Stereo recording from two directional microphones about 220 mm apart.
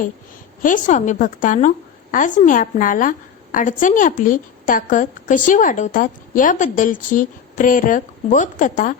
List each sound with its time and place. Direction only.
0.6 s a woman's voice: 35° left (ahead or behind)